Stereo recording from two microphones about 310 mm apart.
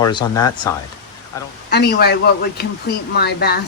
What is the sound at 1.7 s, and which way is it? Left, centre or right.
A man's voice, left.